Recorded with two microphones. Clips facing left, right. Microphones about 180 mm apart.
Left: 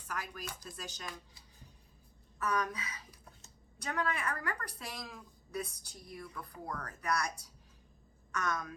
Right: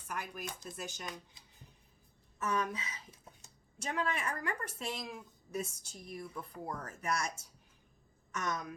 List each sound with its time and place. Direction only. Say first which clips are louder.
0.1 s a woman's voice: right 1 dB; 20° right (ahead or behind)